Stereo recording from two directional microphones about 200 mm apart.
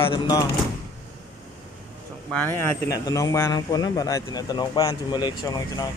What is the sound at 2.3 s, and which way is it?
Speech, 10° left (ahead or behind).